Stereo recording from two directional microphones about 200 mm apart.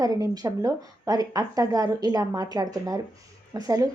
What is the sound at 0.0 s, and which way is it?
A woman's voice, 15° right (ahead or behind).